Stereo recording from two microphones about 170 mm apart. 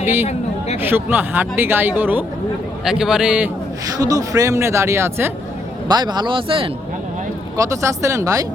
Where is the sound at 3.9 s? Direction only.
20° right (ahead or behind).